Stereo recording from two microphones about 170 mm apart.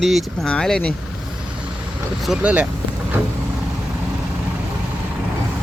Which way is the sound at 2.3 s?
5° right (ahead or behind).